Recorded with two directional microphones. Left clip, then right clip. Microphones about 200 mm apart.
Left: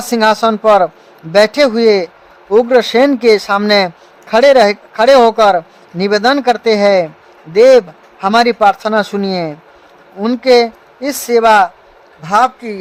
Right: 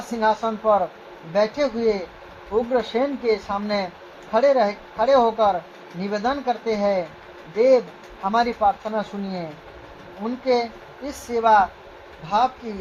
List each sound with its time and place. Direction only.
0.1 s a man's voice: 55° left (ahead or behind)